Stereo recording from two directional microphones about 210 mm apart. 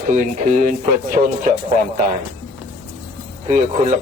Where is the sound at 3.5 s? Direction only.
35° right (ahead or behind).